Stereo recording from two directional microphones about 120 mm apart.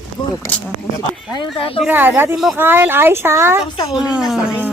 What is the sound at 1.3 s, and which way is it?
Speech, 50° left (ahead or behind).